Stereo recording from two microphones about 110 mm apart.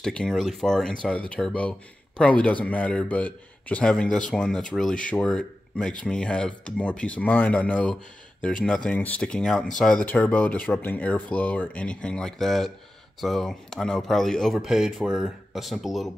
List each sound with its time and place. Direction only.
0.0 s speech: 5° left (ahead or behind)